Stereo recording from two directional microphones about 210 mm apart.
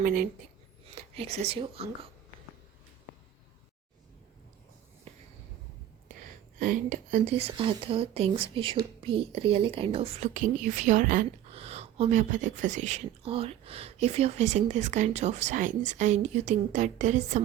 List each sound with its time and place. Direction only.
0.0 s speech: 40° right (ahead or behind)
1.1 s speech: 30° right (ahead or behind)
6.6 s speech: 40° right (ahead or behind)